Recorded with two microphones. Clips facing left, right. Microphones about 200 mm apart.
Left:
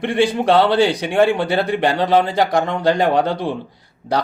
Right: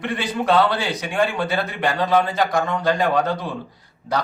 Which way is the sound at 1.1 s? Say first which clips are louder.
Left 5 dB; 25° left (ahead or behind).